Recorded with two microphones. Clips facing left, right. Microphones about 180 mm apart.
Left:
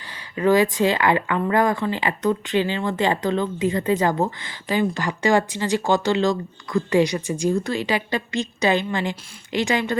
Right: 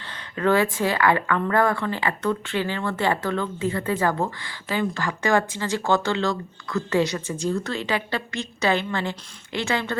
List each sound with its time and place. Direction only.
0.0 s a woman's voice: 10° left (ahead or behind)